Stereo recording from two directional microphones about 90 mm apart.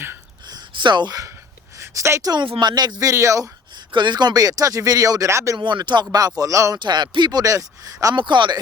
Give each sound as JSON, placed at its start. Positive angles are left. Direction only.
{"t": 0.4, "sound": "a sound", "side_deg": -55}
{"t": 1.8, "sound": "a woman's voice", "side_deg": -30}
{"t": 2.3, "sound": "speech", "side_deg": -60}
{"t": 3.9, "sound": "speech", "side_deg": -55}
{"t": 5.5, "sound": "speech", "side_deg": -55}
{"t": 6.7, "sound": "speech", "side_deg": -55}
{"t": 8.1, "sound": "speech", "side_deg": -60}